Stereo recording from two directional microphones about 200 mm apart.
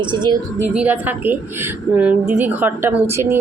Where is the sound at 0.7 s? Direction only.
10° right (ahead or behind).